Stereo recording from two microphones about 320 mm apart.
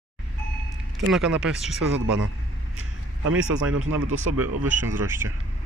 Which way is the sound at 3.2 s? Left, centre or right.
Right.